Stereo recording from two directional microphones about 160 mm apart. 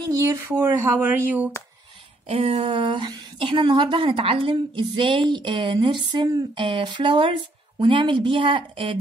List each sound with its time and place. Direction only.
0.0 s speech: 20° right (ahead or behind)
2.2 s a woman's voice: 40° right (ahead or behind)